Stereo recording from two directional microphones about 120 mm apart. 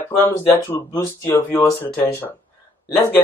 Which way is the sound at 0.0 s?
20° left (ahead or behind).